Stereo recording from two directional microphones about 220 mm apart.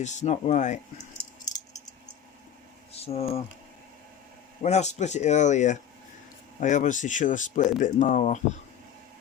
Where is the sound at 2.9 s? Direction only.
25° left (ahead or behind).